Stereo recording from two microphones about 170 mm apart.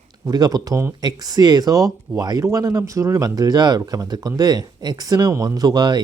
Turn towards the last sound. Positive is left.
turn(degrees=-25)  # may be behind; listen again after turning